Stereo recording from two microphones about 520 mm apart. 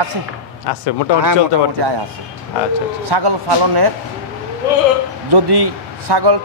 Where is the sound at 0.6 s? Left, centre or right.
Left.